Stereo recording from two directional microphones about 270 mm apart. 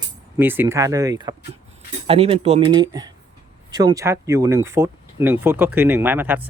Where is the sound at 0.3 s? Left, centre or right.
Centre.